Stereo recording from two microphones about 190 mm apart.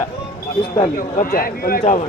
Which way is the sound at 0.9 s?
50° left (ahead or behind).